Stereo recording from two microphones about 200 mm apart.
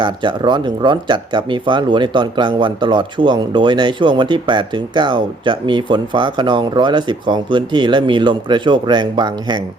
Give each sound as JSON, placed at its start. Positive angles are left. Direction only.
{"t": 0.0, "sound": "speech", "side_deg": -25}